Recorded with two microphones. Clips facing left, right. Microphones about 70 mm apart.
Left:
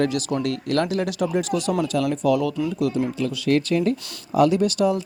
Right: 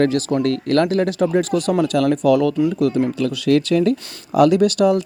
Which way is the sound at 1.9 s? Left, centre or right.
Right.